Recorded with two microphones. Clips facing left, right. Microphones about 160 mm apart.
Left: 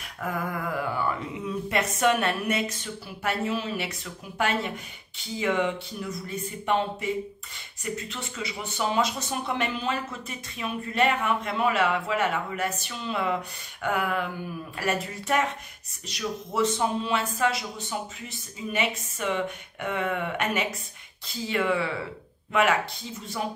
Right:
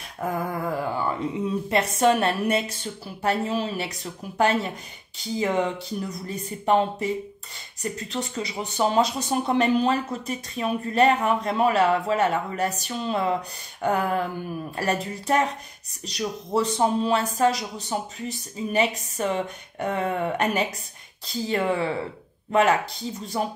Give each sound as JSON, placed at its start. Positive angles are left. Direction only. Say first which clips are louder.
{"t": 0.2, "sound": "speech", "louder": "right 3 dB", "side_deg": -30}